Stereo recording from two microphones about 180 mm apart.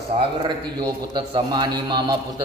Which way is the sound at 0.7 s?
25° right (ahead or behind).